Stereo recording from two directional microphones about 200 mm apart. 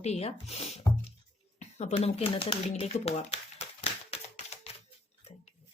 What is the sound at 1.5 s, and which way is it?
Shuffling cards, 35° left (ahead or behind).